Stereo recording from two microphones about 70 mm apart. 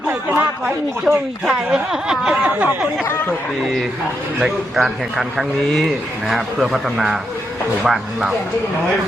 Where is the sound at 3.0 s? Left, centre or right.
Left.